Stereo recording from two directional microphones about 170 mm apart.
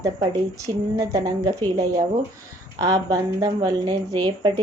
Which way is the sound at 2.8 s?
20° right (ahead or behind).